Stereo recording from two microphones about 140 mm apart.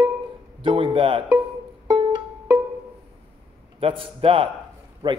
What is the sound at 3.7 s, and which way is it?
A man's voice, 40° right (ahead or behind).